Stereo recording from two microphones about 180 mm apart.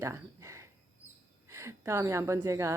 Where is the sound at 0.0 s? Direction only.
15° right (ahead or behind).